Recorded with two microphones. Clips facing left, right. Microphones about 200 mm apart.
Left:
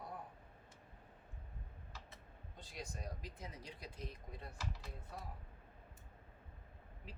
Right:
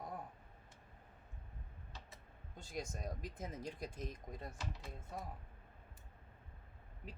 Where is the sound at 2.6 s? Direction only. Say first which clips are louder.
Right 5 dB; 45° right (ahead or behind).